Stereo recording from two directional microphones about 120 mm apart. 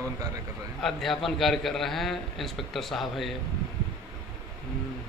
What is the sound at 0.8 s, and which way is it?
A man's voice, 5° left (ahead or behind).